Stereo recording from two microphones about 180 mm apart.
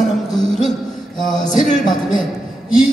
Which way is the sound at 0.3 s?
Centre (ahead or behind).